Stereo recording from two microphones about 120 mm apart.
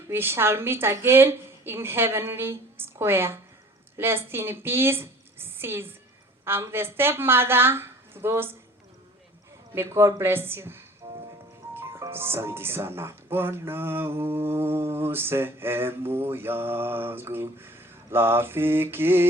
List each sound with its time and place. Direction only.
0.1 s music: 20° right (ahead or behind)
3.9 s a woman's voice: 20° right (ahead or behind)
6.4 s music: 20° right (ahead or behind)
9.7 s music: 25° right (ahead or behind)